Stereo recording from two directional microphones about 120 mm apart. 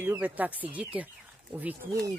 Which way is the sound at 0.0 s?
15° right (ahead or behind).